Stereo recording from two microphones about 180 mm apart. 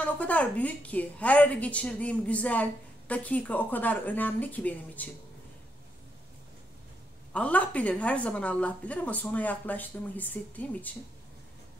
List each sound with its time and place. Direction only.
0.0 s a woman's voice: 10° left (ahead or behind)
7.3 s a woman's voice: 5° left (ahead or behind)